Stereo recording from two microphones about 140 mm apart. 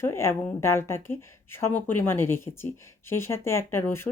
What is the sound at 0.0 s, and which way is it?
Speech, 20° left (ahead or behind).